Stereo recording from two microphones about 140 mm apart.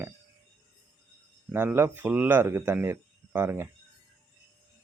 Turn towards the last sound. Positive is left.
turn(degrees=-15)  # may be behind; listen again after turning